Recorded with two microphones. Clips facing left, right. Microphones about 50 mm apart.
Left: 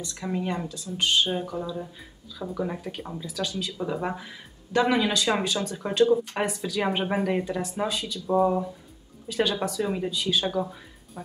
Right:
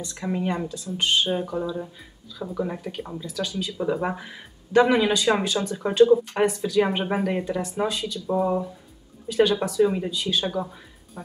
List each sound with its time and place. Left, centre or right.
0.0 s speech: centre
2.3 s speech: centre
6.3 s speech: centre